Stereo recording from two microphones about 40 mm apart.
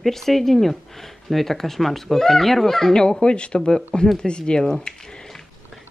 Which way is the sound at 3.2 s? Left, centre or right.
Left.